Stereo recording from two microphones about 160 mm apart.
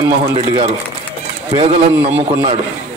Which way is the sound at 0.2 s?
40° right (ahead or behind).